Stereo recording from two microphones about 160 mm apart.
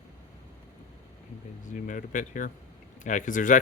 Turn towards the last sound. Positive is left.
turn(degrees=55)  # may be behind; listen again after turning